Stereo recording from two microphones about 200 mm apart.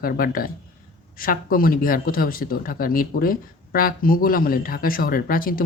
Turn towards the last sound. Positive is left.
turn(degrees=45)  # may be behind; listen again after turning